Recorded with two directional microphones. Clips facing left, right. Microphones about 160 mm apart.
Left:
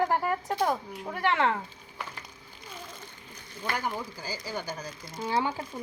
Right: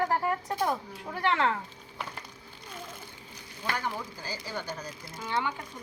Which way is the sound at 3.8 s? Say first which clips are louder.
Left 2 dB; 10° left (ahead or behind).